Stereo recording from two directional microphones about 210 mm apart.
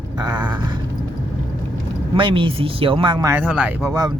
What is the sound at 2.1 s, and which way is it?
Speech, 25° right (ahead or behind).